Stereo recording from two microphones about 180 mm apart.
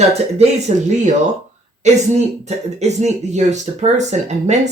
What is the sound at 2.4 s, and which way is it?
Speech, 40° right (ahead or behind).